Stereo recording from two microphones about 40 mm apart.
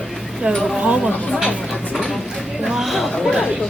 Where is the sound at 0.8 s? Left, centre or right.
Centre.